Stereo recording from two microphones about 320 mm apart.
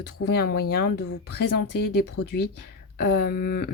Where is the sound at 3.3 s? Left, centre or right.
Left.